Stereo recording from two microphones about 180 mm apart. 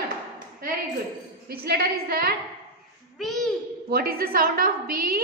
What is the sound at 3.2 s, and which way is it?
Babbling, centre (ahead or behind).